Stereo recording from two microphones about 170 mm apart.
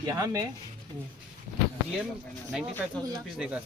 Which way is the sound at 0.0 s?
20° right (ahead or behind).